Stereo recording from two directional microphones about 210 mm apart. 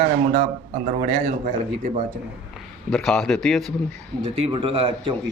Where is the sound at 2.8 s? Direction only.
Centre (ahead or behind).